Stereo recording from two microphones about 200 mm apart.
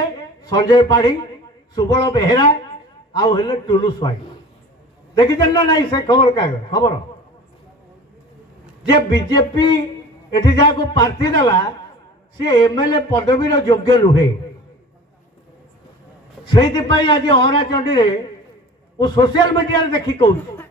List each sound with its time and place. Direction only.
0.4 s a man's voice: 20° left (ahead or behind)
5.1 s a man's voice: 20° left (ahead or behind)
8.8 s a man's voice: 20° left (ahead or behind)
16.4 s a man's voice: 20° left (ahead or behind)